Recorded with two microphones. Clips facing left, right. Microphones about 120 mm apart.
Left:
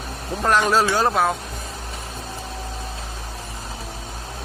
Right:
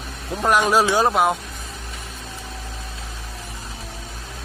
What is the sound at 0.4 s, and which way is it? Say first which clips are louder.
Speech: right 1 dB; 10° right (ahead or behind).